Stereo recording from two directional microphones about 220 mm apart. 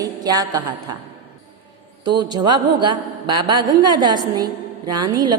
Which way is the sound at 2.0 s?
20° right (ahead or behind).